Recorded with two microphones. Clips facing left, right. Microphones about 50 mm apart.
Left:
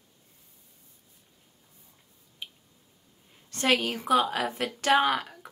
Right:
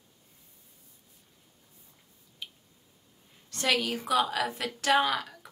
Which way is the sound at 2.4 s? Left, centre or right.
Left.